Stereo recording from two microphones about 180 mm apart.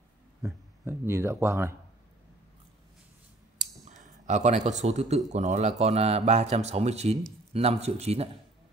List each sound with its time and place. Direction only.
0.4 s speech: 15° right (ahead or behind)
4.0 s a sound: 40° right (ahead or behind)
4.6 s speech: 40° right (ahead or behind)